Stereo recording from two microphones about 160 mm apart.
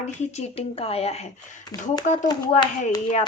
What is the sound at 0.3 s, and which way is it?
Speech, 40° left (ahead or behind).